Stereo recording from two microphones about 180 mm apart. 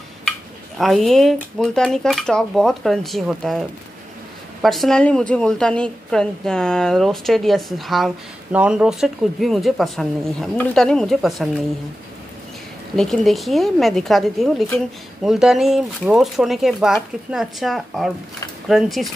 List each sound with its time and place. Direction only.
0.7 s a woman's voice: centre (ahead or behind)
12.9 s a woman's voice: centre (ahead or behind)